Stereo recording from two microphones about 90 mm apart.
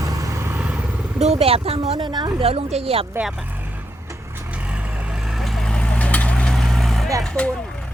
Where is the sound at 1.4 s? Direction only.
90° right.